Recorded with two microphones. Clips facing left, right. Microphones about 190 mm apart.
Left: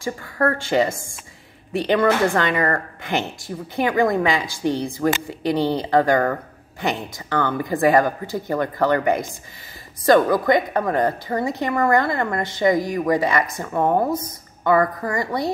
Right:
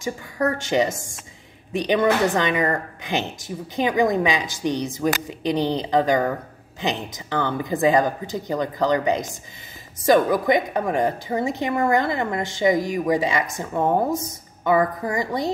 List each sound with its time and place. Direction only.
0.0 s a woman's voice: 20° right (ahead or behind)